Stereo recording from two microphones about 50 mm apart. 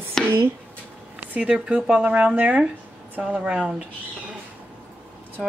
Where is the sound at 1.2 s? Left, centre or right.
Right.